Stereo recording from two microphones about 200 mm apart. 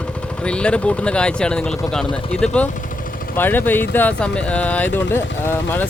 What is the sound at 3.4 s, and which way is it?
Speech, 10° left (ahead or behind).